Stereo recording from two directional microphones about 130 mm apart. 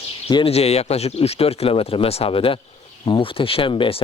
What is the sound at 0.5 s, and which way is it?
Speech, 55° left (ahead or behind).